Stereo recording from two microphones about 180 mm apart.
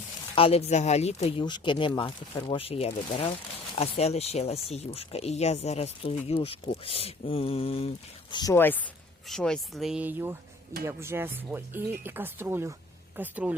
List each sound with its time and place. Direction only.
0.3 s speech: 30° left (ahead or behind); by 13.6 s 10° right (ahead or behind)